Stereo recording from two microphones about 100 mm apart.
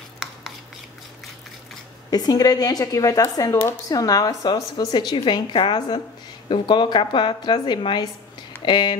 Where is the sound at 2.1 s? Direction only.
40° left (ahead or behind).